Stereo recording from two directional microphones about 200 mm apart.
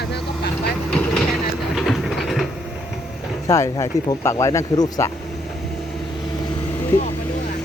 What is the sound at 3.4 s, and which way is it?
Speech, 15° left (ahead or behind).